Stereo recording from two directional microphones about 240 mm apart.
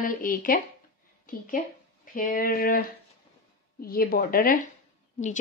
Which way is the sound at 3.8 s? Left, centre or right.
Left.